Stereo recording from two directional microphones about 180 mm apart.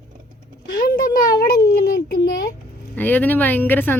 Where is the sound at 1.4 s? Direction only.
60° left (ahead or behind).